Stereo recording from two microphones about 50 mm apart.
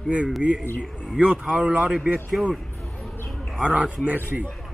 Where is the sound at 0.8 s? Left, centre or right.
Centre.